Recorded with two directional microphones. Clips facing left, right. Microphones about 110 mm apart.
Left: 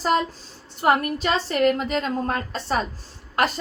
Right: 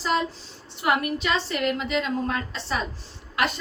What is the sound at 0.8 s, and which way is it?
A woman's voice, 40° left (ahead or behind).